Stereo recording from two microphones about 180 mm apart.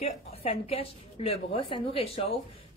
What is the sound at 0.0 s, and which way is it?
A woman's voice, 35° left (ahead or behind).